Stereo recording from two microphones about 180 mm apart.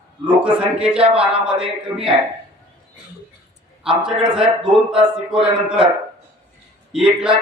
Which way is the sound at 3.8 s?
5° right (ahead or behind).